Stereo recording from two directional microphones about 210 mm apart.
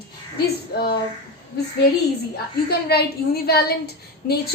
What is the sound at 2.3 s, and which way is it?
A woman's voice, 50° left (ahead or behind).